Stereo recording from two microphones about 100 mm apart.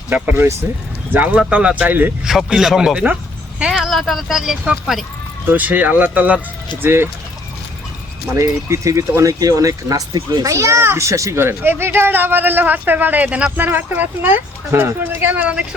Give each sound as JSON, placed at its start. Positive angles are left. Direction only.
{"t": 0.1, "sound": "speech", "side_deg": -15}
{"t": 2.5, "sound": "speech", "side_deg": -5}
{"t": 5.5, "sound": "a child's voice", "side_deg": -15}
{"t": 8.4, "sound": "a child's voice", "side_deg": -30}